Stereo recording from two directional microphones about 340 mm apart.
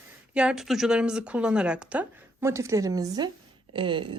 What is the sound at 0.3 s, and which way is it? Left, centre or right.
Speech, centre.